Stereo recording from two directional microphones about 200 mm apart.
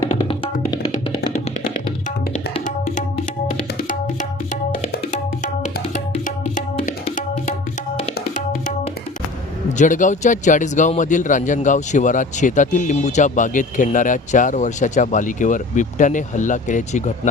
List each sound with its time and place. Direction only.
0.1 s music: 30° left (ahead or behind)
4.9 s tabla: 40° left (ahead or behind)
9.7 s speech: 40° left (ahead or behind)